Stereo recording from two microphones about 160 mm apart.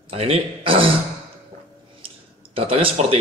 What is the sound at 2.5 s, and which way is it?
Speech, 35° right (ahead or behind).